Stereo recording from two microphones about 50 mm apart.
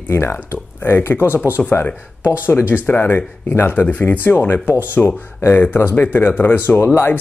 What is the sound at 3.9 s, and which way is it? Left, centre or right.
Speech, left.